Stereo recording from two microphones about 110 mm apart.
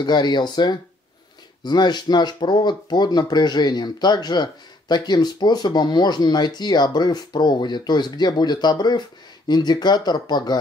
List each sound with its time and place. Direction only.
0.0 s speech: 40° left (ahead or behind)